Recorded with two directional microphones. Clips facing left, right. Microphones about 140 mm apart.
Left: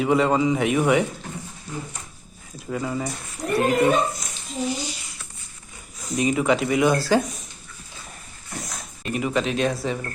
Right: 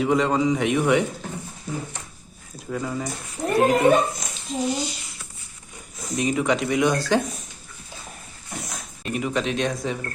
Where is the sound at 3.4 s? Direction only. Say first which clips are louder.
Right 2 dB; 25° right (ahead or behind).